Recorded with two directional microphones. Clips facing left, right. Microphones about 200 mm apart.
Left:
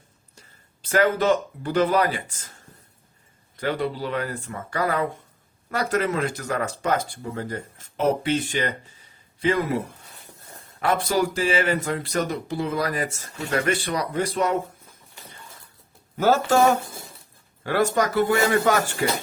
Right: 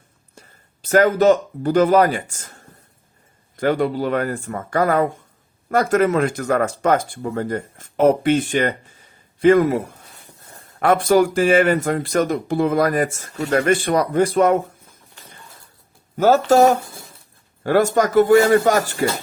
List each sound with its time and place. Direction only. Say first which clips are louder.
0.3 s speech: right 7 dB; 45° right (ahead or behind)
3.6 s speech: right 7 dB; 50° right (ahead or behind)
16.1 s speech: right 5 dB; 45° right (ahead or behind)